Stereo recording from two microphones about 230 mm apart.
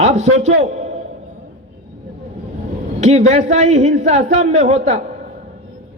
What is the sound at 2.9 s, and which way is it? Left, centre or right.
A man's voice, right.